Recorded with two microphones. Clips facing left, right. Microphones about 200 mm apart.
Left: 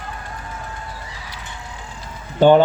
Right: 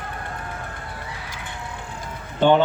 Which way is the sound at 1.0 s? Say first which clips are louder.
Right 1 dB; 60° right (ahead or behind).